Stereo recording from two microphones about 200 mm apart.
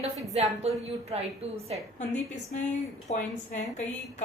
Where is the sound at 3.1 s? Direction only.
35° left (ahead or behind).